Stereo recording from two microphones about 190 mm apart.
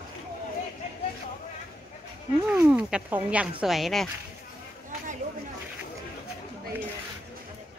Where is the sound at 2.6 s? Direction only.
10° right (ahead or behind).